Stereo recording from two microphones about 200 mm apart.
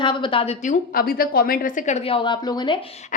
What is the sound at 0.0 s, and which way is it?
Speech, 25° left (ahead or behind).